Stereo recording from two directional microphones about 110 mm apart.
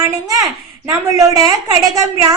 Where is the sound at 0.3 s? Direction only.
30° right (ahead or behind).